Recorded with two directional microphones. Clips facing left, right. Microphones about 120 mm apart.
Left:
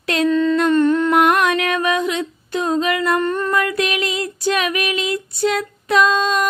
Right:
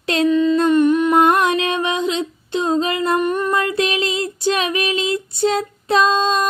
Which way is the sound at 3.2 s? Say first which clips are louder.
Even; 15° right (ahead or behind).